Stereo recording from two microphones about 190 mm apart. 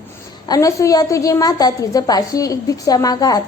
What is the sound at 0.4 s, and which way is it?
A woman's voice, 20° left (ahead or behind).